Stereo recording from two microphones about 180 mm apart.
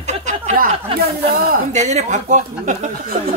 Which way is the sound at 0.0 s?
40° right (ahead or behind).